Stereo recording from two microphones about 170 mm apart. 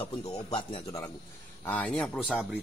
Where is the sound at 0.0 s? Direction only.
25° left (ahead or behind).